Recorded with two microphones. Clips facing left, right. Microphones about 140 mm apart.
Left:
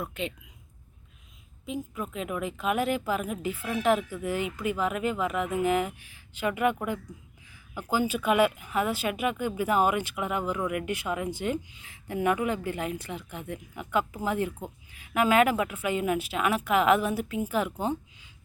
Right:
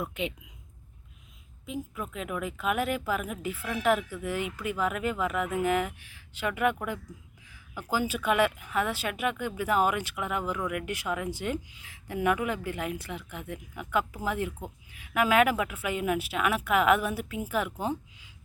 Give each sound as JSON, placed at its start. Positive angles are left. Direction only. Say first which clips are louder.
{"t": 0.0, "sound": "speech", "louder": "right 1 dB", "side_deg": -15}
{"t": 1.6, "sound": "a woman's voice", "louder": "left 2 dB", "side_deg": 0}